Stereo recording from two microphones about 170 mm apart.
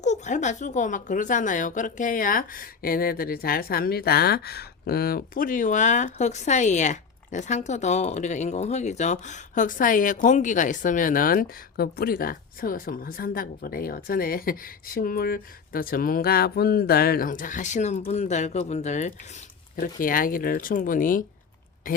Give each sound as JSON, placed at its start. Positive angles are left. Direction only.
{"t": 0.0, "sound": "a woman's voice", "side_deg": 45}
{"t": 19.7, "sound": "a woman's voice", "side_deg": 55}